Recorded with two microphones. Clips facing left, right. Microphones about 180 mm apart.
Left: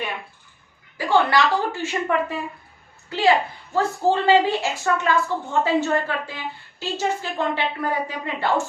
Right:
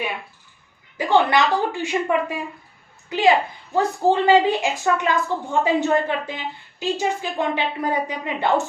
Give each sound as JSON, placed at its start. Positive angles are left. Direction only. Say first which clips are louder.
{"t": 0.9, "sound": "a woman's voice", "louder": "right 1 dB", "side_deg": -20}